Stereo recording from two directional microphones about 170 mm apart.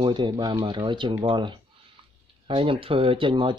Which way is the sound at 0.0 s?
25° right (ahead or behind).